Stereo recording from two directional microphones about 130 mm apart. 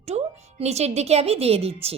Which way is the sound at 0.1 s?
55° right (ahead or behind).